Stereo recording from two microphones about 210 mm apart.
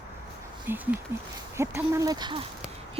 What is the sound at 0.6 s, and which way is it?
Speech, 10° right (ahead or behind).